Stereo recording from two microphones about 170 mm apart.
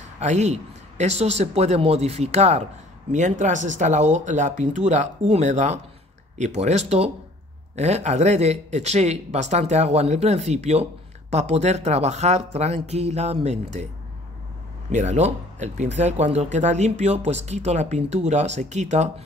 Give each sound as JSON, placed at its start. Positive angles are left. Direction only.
{"t": 0.2, "sound": "speech", "side_deg": -45}
{"t": 14.9, "sound": "speech", "side_deg": -45}